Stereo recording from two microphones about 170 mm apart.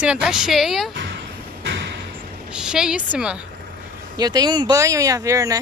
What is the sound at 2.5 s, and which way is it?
Speech, 5° right (ahead or behind).